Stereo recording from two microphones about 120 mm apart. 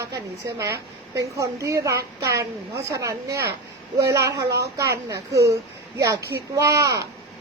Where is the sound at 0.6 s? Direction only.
25° right (ahead or behind).